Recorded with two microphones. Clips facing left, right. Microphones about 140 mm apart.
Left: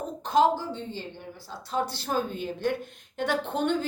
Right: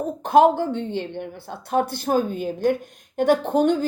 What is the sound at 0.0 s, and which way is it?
Speech, 55° right (ahead or behind).